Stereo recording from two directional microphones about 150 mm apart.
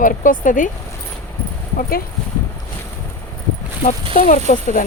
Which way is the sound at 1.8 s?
75° left (ahead or behind).